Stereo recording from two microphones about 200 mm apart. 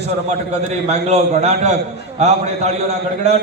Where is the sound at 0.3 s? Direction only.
35° right (ahead or behind).